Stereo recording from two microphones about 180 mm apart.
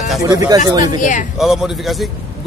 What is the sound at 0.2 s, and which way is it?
Speech, 20° right (ahead or behind).